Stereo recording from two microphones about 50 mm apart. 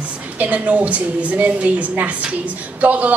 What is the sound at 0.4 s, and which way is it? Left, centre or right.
A woman's voice, right.